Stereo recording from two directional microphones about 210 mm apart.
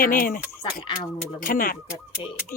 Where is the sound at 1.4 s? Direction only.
40° left (ahead or behind).